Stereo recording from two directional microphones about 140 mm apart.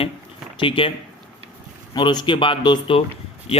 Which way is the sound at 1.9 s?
30° left (ahead or behind).